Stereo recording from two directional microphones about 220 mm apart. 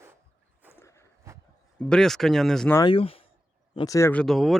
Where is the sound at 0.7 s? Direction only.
10° left (ahead or behind).